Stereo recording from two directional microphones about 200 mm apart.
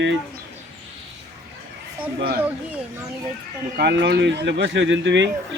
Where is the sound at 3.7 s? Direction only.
55° right (ahead or behind).